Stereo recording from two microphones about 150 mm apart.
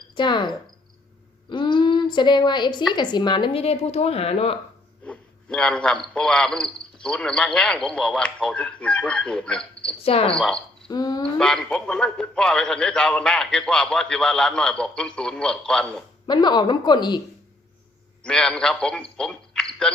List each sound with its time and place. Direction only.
0.2 s a woman's voice: 30° left (ahead or behind)
5.0 s a sound: 5° left (ahead or behind)
6.1 s a man's voice: 5° left (ahead or behind)
10.0 s a woman's voice: 40° left (ahead or behind)
10.8 s a woman's voice: 25° left (ahead or behind)
11.3 s a man's voice: 5° left (ahead or behind)
16.2 s a woman's voice: 30° left (ahead or behind)
18.2 s a man's voice: 5° left (ahead or behind)